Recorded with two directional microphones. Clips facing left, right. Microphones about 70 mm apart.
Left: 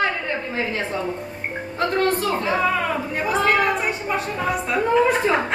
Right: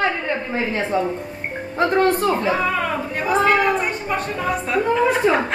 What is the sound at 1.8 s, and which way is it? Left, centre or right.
Speech, right.